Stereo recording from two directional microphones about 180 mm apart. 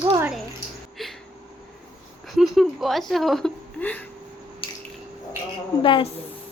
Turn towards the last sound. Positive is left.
turn(degrees=30)  # may be behind; listen again after turning